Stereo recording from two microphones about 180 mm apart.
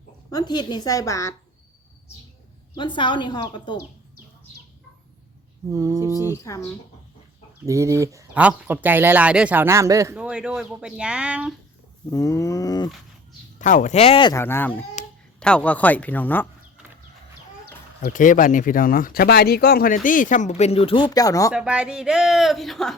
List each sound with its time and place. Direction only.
0.3 s speech: 20° left (ahead or behind)
2.7 s speech: 25° left (ahead or behind)
5.7 s speech: 15° right (ahead or behind)
6.3 s speech: 15° left (ahead or behind)
7.6 s speech: 15° right (ahead or behind)
10.2 s speech: 5° right (ahead or behind)
12.1 s speech: 20° left (ahead or behind)
13.6 s speech: 45° left (ahead or behind); by 14.3 s 30° left (ahead or behind)
14.3 s speech: 15° left (ahead or behind)
18.0 s speech: 45° left (ahead or behind); by 21.5 s 20° left (ahead or behind)
21.5 s speech: 5° right (ahead or behind)